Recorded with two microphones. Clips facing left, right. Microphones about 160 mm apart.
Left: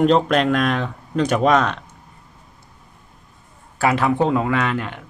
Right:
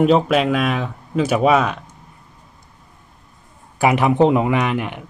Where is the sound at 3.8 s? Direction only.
15° right (ahead or behind).